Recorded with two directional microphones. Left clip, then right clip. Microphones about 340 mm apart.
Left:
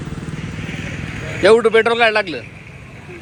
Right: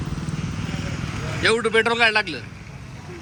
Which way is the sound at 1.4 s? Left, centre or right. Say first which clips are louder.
Left 8 dB; centre.